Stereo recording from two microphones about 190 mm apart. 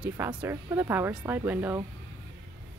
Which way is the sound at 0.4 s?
15° right (ahead or behind).